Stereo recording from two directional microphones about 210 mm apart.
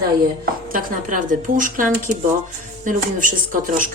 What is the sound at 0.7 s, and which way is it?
A woman's voice, 40° right (ahead or behind).